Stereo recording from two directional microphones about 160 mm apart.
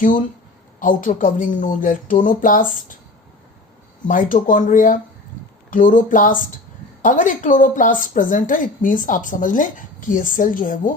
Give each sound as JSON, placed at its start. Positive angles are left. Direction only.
{"t": 0.8, "sound": "speech", "side_deg": 55}
{"t": 4.0, "sound": "speech", "side_deg": 55}